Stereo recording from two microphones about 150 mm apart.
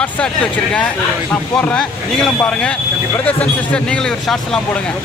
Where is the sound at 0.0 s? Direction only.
5° left (ahead or behind).